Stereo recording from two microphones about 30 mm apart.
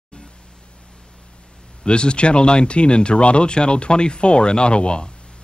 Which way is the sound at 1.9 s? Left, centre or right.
Left.